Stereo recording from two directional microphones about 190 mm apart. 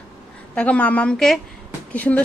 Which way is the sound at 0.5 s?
5° left (ahead or behind).